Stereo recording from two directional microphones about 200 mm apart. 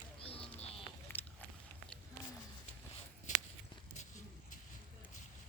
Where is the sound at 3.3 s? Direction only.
40° left (ahead or behind).